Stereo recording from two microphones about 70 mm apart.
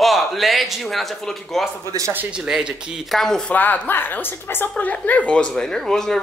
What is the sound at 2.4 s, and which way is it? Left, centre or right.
Speech, centre.